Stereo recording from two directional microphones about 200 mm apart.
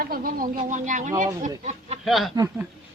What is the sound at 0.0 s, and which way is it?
Speech, 45° right (ahead or behind).